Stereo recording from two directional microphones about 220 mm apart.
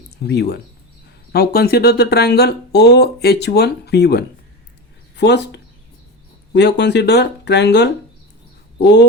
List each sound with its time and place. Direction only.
0.3 s speech: 50° left (ahead or behind)